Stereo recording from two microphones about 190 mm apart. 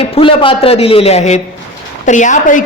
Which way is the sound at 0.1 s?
25° left (ahead or behind).